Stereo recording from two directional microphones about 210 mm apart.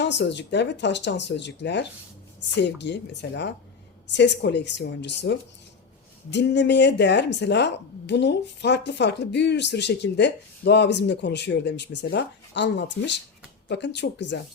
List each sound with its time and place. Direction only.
0.0 s speech: 55° left (ahead or behind)